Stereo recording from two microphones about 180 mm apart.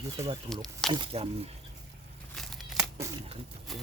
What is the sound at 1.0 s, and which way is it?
Speech, 30° right (ahead or behind).